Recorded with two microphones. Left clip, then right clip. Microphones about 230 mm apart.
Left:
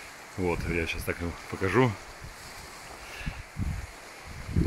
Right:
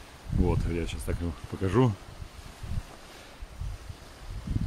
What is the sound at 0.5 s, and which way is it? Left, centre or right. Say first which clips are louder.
Speech: left 5 dB; centre.